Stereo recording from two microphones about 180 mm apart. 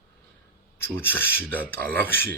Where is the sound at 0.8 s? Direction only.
10° left (ahead or behind).